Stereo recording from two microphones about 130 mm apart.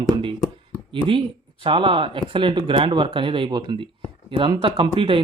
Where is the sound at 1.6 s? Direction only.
40° right (ahead or behind).